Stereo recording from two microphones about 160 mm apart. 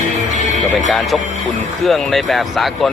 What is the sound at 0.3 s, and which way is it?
Music, 50° right (ahead or behind).